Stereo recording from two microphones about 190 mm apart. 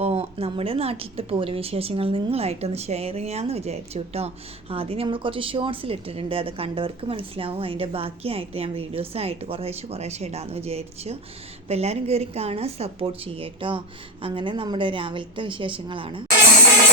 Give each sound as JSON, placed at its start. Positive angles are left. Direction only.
{"t": 0.0, "sound": "a woman's voice", "side_deg": -30}